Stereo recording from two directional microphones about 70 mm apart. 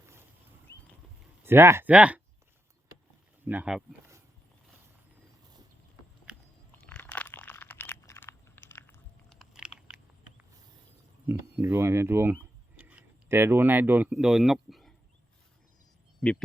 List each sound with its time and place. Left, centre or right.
0.0 s a sound: right
1.5 s speech: right
1.8 s speech: centre
3.4 s speech: right
7.0 s a sound: left
8.2 s biting: left
9.3 s biting: centre
11.3 s speech: right
12.8 s a sound: centre
13.2 s speech: right
14.1 s speech: centre